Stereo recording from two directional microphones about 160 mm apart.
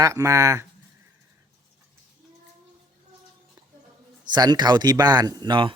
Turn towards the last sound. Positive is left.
turn(degrees=-30)  # may be behind; listen again after turning